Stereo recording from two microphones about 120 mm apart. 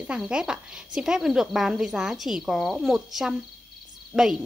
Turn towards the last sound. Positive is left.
turn(degrees=-5)  # may be behind; listen again after turning